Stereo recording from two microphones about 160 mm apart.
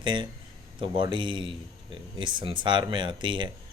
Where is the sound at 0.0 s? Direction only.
30° right (ahead or behind).